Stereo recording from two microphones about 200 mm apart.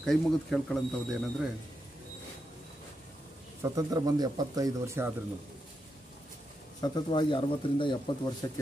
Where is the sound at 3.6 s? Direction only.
15° right (ahead or behind).